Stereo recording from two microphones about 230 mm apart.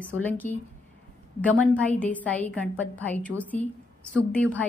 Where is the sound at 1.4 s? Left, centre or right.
Centre.